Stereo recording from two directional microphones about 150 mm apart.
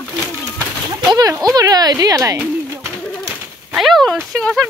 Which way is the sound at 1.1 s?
25° right (ahead or behind).